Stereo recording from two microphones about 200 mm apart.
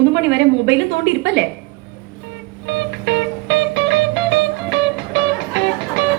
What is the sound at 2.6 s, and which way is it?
Music, 60° right (ahead or behind).